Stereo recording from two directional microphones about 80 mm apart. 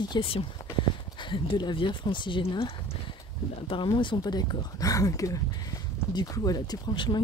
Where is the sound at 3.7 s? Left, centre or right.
Left.